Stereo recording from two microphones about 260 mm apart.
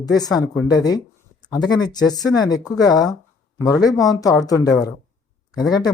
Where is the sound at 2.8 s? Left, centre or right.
Centre.